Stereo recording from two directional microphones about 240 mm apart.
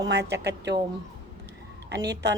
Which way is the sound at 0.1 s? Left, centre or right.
Right.